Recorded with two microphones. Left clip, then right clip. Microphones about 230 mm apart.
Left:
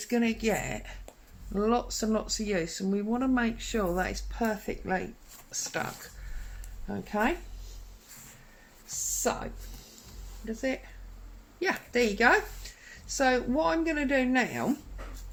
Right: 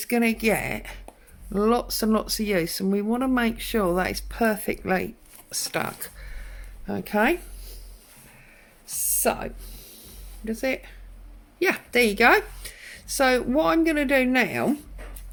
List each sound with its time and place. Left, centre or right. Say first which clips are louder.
0.0 s a woman's voice: right 6 dB; right
9.2 s a woman's voice: right 7 dB; right